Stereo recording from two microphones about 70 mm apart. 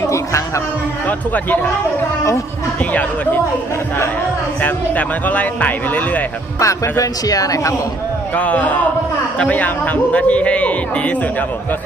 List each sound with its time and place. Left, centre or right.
1.0 s speech: left
4.6 s speech: left
6.6 s a man's voice: left
8.4 s speech: left